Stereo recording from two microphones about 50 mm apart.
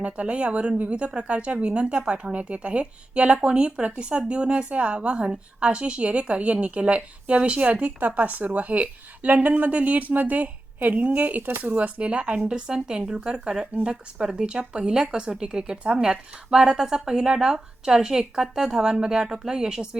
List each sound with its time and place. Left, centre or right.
0.0 s a woman's voice: right